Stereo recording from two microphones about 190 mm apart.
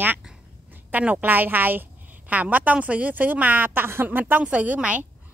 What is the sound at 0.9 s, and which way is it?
A woman's voice, 5° right (ahead or behind).